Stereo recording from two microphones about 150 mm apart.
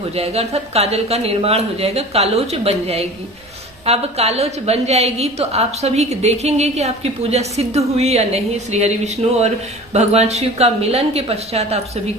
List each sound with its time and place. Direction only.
0.1 s a woman's voice: 45° right (ahead or behind)